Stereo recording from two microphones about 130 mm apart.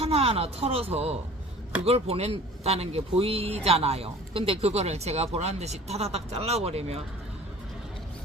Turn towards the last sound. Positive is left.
turn(degrees=-55)  # may be behind; listen again after turning